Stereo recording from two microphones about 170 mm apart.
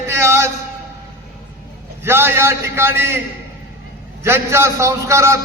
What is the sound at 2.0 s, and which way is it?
A man's voice, 15° right (ahead or behind).